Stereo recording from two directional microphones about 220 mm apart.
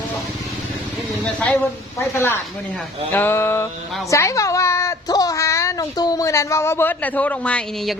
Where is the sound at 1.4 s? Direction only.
5° left (ahead or behind).